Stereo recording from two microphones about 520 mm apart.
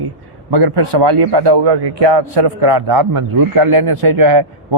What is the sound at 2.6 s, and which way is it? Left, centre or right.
A man's voice, right.